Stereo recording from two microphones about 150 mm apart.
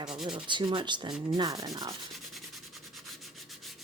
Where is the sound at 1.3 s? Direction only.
25° right (ahead or behind).